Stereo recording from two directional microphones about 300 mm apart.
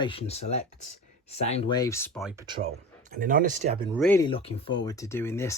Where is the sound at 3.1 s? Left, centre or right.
Right.